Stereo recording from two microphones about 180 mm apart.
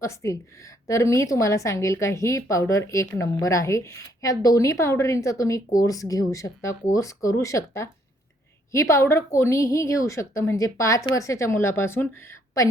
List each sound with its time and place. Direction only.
0.0 s a woman's voice: 15° left (ahead or behind)